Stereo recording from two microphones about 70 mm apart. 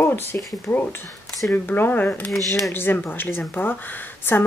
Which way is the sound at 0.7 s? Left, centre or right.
Left.